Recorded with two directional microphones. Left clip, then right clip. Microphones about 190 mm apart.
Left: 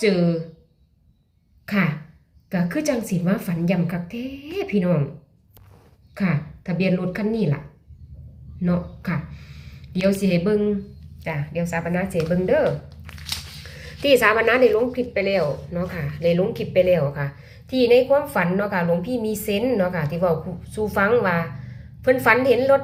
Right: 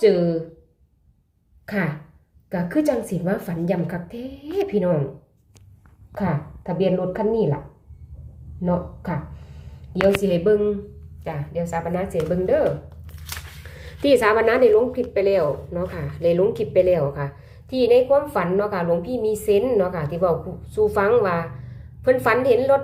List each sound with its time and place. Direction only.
0.0 s a woman's voice: 5° right (ahead or behind)
1.6 s a woman's voice: 5° right (ahead or behind)
7.2 s speech: 25° left (ahead or behind)
8.6 s speech: centre (ahead or behind)
10.2 s a woman's voice: 10° right (ahead or behind)